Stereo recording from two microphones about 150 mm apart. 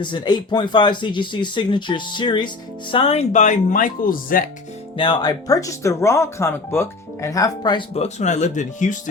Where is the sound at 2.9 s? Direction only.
40° left (ahead or behind); by 4.5 s 70° left (ahead or behind).